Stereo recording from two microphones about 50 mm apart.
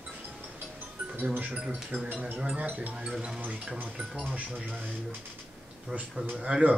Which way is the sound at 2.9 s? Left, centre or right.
Centre.